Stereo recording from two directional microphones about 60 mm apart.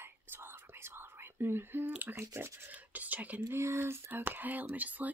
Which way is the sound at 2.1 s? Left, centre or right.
Right.